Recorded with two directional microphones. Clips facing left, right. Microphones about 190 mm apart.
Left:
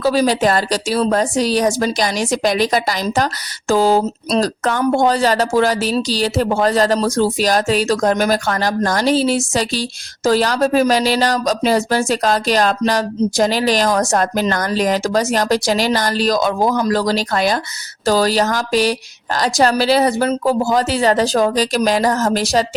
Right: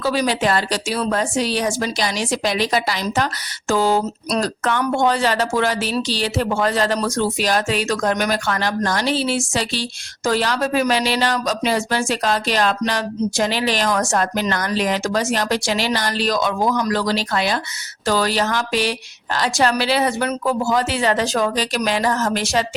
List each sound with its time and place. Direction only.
0.0 s a woman's voice: 40° left (ahead or behind)